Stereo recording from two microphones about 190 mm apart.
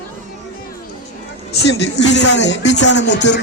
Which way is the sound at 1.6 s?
65° left (ahead or behind).